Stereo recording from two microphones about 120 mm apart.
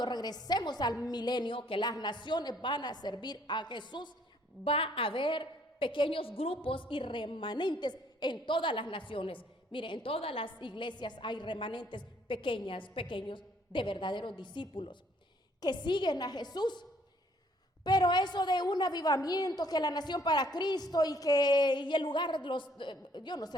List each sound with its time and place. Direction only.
0.0 s a woman's voice: 35° left (ahead or behind)
4.6 s a woman's voice: 50° left (ahead or behind)
17.8 s a woman's voice: 35° left (ahead or behind)